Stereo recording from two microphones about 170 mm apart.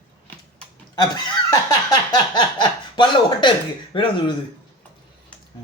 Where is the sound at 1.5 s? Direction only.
20° left (ahead or behind).